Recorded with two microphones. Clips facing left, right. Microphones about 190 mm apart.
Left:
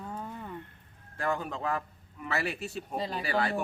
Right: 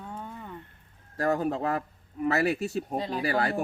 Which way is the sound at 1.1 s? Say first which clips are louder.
Right 6 dB; 40° right (ahead or behind).